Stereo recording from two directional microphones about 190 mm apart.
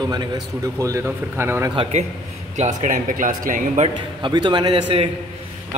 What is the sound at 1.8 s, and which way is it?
A man's voice, 35° right (ahead or behind).